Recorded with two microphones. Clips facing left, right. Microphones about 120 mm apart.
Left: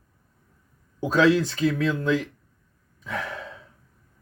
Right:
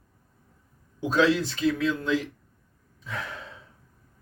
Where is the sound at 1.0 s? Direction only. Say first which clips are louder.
Left 3 dB; 45° left (ahead or behind).